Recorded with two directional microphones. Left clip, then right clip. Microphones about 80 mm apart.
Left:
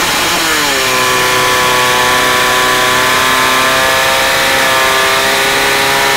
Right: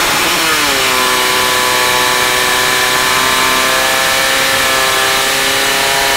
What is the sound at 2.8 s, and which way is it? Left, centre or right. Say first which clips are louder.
Vehicle: left 2 dB; right.